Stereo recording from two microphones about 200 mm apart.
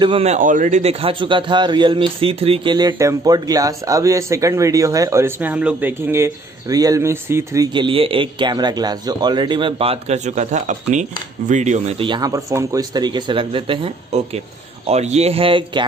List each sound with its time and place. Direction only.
0.0 s a man's voice: 30° right (ahead or behind)